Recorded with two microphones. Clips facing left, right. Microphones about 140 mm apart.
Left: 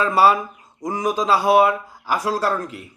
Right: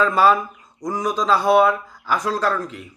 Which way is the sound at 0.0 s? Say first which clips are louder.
Even; 10° left (ahead or behind).